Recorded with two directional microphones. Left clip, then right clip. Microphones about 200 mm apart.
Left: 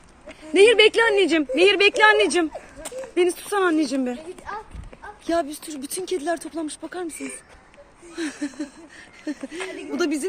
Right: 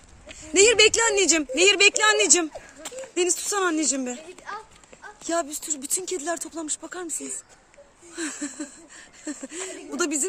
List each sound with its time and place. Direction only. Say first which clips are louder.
0.3 s a woman's voice: left 3 dB; 10° right (ahead or behind)
5.2 s speech: left 3 dB; 5° right (ahead or behind)
8.1 s a woman's voice: left 3 dB; 10° right (ahead or behind)